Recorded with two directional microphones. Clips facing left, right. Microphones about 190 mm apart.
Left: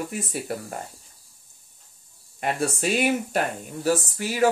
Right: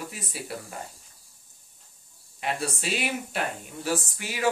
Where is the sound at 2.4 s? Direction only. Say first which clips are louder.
Left 5 dB; 45° left (ahead or behind).